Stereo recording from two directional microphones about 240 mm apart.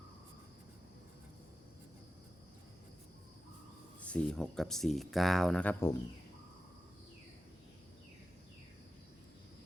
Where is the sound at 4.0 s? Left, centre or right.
Centre.